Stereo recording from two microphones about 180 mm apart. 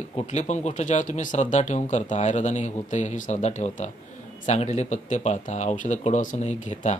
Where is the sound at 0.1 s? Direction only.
40° left (ahead or behind).